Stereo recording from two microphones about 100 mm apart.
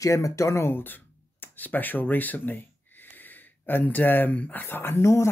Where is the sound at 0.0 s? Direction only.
35° left (ahead or behind).